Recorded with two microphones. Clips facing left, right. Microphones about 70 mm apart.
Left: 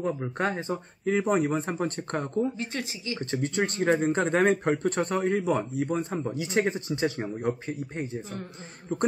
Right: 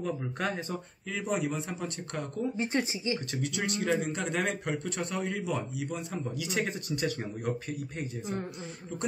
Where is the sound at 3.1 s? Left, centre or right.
Left.